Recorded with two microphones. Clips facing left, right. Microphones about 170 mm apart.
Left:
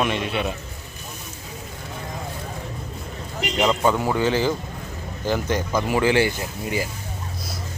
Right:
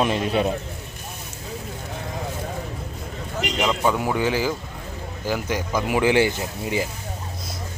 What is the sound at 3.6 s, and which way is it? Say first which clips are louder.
Speech: left 2 dB; centre (ahead or behind).